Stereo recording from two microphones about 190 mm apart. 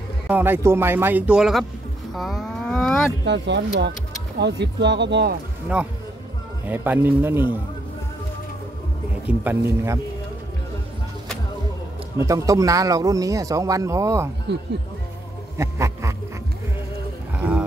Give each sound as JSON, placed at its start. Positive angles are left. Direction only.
{"t": 0.3, "sound": "speech", "side_deg": -10}
{"t": 2.1, "sound": "moo", "side_deg": 0}
{"t": 3.3, "sound": "speech", "side_deg": -65}
{"t": 6.6, "sound": "speech", "side_deg": -10}
{"t": 9.3, "sound": "speech", "side_deg": -10}
{"t": 12.3, "sound": "speech", "side_deg": -15}
{"t": 15.5, "sound": "a sound", "side_deg": -15}
{"t": 17.4, "sound": "a sound", "side_deg": -5}